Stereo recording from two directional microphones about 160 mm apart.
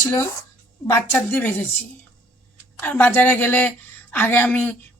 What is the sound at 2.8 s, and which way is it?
A woman's voice, 10° left (ahead or behind).